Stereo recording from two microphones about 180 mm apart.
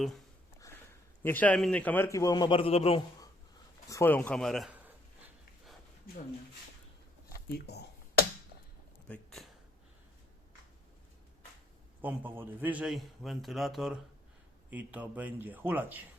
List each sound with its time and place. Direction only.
0.6 s a sound: 20° left (ahead or behind)
1.2 s a man's voice: 10° left (ahead or behind); by 3.0 s 35° left (ahead or behind)
3.8 s a man's voice: 15° left (ahead or behind)
6.1 s speech: 55° left (ahead or behind)
9.0 s a sound: 5° left (ahead or behind)
12.0 s a man's voice: 10° right (ahead or behind)